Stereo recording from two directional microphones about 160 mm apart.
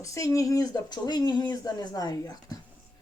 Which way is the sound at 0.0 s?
20° left (ahead or behind).